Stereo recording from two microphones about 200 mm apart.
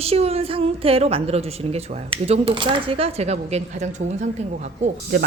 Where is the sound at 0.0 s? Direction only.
30° right (ahead or behind).